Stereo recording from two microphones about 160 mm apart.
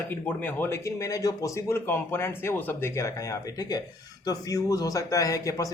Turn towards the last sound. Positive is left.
turn(degrees=20)  # may be behind; listen again after turning